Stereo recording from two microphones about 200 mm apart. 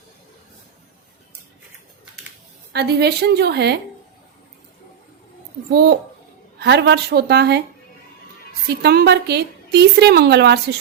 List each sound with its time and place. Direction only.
2.7 s a woman's voice: 55° right (ahead or behind)
6.6 s a woman's voice: 55° right (ahead or behind)
8.6 s a woman's voice: 55° right (ahead or behind)